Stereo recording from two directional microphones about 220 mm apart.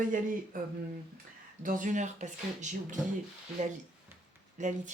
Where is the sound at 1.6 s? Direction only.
35° right (ahead or behind).